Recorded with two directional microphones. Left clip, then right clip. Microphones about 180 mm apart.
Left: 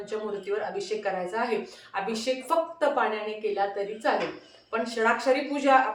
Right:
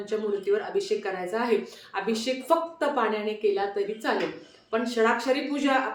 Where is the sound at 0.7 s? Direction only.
20° right (ahead or behind).